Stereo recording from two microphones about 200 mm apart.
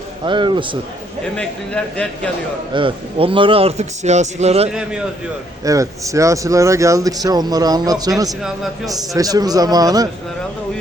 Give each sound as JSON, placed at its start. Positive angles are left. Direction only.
{"t": 0.3, "sound": "a man's voice", "side_deg": -25}
{"t": 1.4, "sound": "a man's voice", "side_deg": 5}
{"t": 2.7, "sound": "speech", "side_deg": -25}
{"t": 4.7, "sound": "a man's voice", "side_deg": -5}
{"t": 5.6, "sound": "speech", "side_deg": -15}
{"t": 8.4, "sound": "a man's voice", "side_deg": 0}
{"t": 8.9, "sound": "a man's voice", "side_deg": -20}